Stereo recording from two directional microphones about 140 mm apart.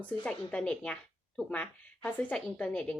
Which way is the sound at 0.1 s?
10° left (ahead or behind).